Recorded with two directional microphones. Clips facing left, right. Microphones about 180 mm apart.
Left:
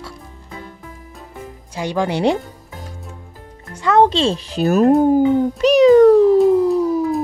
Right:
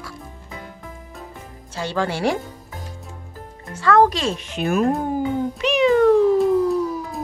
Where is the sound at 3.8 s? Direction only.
20° left (ahead or behind); by 5.0 s 40° left (ahead or behind).